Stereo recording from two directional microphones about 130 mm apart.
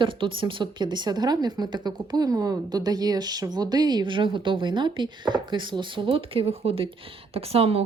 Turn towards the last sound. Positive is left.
turn(degrees=-50)  # may be behind; listen again after turning